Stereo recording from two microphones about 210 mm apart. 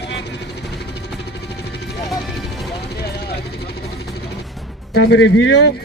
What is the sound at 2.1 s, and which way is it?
Music, centre (ahead or behind).